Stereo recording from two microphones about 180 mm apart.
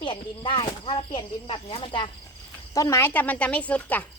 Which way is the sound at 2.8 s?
15° left (ahead or behind).